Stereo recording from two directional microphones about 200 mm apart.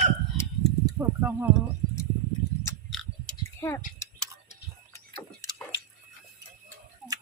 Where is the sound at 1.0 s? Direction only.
15° right (ahead or behind).